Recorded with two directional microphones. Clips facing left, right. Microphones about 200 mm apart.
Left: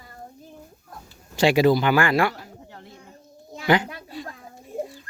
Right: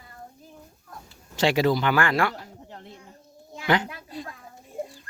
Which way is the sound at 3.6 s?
10° left (ahead or behind).